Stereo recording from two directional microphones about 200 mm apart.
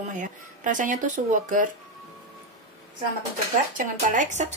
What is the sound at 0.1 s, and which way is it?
Speech, 40° right (ahead or behind).